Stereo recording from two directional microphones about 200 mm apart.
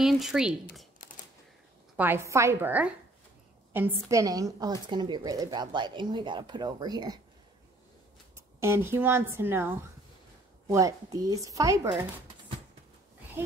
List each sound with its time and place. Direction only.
0.0 s speech: centre (ahead or behind)
2.0 s a woman's voice: 10° right (ahead or behind)
8.5 s speech: 10° right (ahead or behind)